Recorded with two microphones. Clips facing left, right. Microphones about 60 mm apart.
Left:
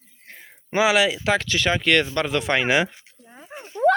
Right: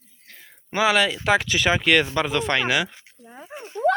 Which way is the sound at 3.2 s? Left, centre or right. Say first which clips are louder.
Right 4 dB; centre.